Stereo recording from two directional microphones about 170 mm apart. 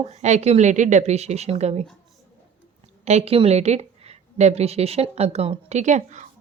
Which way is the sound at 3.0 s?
40° right (ahead or behind).